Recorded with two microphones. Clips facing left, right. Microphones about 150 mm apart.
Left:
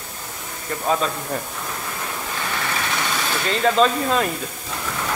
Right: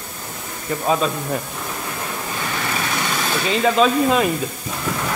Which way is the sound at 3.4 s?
10° right (ahead or behind).